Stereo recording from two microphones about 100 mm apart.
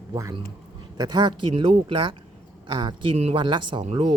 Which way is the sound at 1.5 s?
65° right (ahead or behind).